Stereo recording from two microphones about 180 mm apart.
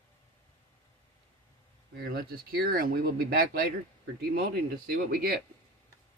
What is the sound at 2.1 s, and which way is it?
Speech, 55° right (ahead or behind).